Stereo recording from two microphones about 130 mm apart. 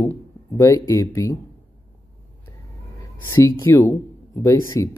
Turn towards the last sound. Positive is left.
turn(degrees=25)  # may be behind; listen again after turning